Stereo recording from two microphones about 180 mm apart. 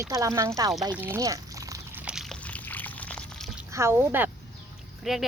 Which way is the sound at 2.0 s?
5° right (ahead or behind).